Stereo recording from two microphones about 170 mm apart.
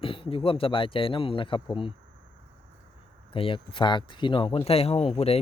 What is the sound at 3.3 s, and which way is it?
Speech, 30° left (ahead or behind).